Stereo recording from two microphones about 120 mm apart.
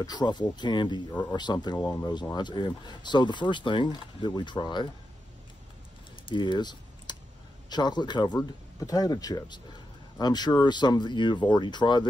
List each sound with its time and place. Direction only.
0.0 s speech: 35° left (ahead or behind)
1.9 s speech: 25° left (ahead or behind)
2.3 s speech: 40° left (ahead or behind)
6.2 s typing: 40° left (ahead or behind)
7.7 s speech: 35° left (ahead or behind)